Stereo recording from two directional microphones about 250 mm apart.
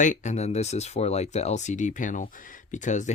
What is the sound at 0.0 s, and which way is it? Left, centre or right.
Speech, left.